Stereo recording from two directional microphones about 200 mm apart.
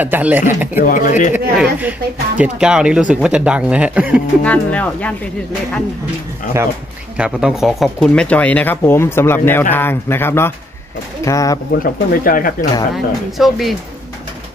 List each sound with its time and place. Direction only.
0.0 s speech: 10° right (ahead or behind)
0.7 s speech: 45° left (ahead or behind)
1.6 s speech: 10° right (ahead or behind)
4.4 s speech: 5° left (ahead or behind)
7.2 s speech: 5° right (ahead or behind); by 11.6 s 15° left (ahead or behind)
11.8 s speech: 45° left (ahead or behind)
12.9 s speech: centre (ahead or behind)